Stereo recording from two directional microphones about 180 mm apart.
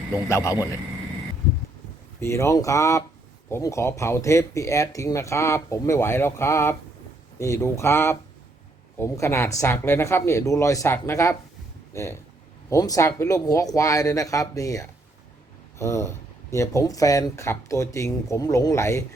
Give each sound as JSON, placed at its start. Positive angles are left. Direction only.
{"t": 0.3, "sound": "speech", "side_deg": 15}
{"t": 2.2, "sound": "speech", "side_deg": 15}